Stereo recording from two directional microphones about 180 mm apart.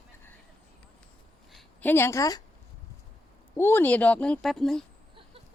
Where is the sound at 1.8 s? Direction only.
10° left (ahead or behind).